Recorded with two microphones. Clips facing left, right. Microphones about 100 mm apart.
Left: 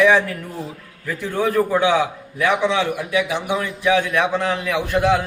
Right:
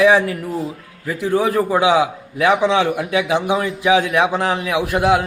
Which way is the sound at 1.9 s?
15° right (ahead or behind).